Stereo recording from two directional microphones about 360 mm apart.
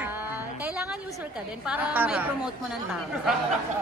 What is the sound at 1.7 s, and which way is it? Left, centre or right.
Speech, centre.